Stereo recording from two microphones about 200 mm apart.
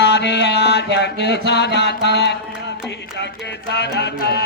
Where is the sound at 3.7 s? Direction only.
60° left (ahead or behind).